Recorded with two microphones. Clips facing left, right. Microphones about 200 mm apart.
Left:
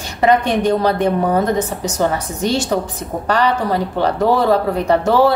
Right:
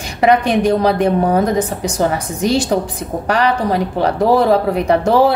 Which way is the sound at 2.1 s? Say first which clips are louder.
Right 2 dB; 15° right (ahead or behind).